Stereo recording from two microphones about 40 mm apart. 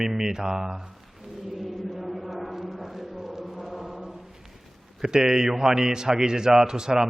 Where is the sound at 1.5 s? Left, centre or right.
Centre.